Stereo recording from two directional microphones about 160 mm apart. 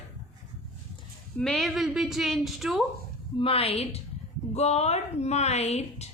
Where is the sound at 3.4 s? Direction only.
40° left (ahead or behind).